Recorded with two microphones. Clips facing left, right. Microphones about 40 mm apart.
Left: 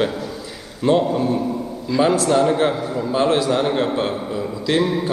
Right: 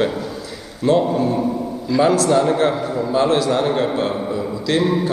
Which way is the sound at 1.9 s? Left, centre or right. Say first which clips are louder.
Right 1 dB; centre.